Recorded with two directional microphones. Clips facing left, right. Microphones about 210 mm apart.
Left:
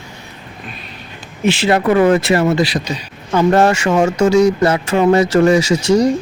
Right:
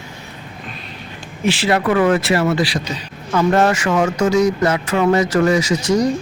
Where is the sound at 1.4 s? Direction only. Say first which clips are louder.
Left 3 dB; 25° left (ahead or behind).